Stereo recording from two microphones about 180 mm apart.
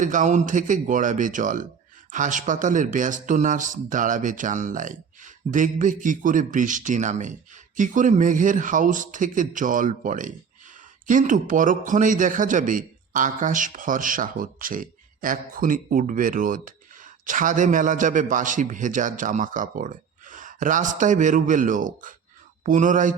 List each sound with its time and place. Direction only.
0.0 s speech: 45° right (ahead or behind)